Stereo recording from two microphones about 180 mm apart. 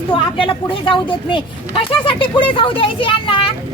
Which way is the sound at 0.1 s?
30° left (ahead or behind).